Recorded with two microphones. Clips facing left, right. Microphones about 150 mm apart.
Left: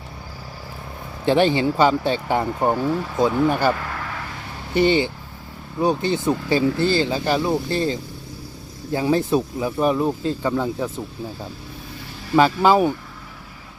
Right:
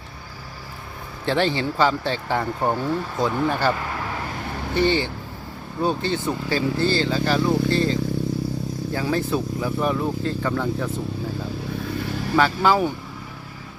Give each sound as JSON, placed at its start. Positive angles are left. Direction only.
{"t": 1.2, "sound": "speech", "side_deg": 15}
{"t": 8.9, "sound": "speech", "side_deg": 20}
{"t": 12.4, "sound": "speech", "side_deg": 20}